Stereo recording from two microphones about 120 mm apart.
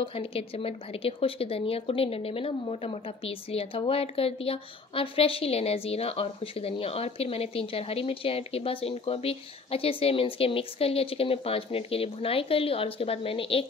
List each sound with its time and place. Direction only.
0.0 s speech: 50° left (ahead or behind)